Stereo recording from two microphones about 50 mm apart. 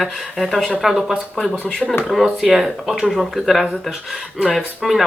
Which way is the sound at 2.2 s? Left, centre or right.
Centre.